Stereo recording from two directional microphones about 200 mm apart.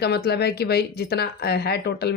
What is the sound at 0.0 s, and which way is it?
Speech, 55° left (ahead or behind).